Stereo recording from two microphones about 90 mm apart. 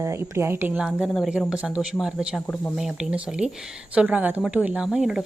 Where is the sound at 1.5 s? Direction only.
10° right (ahead or behind).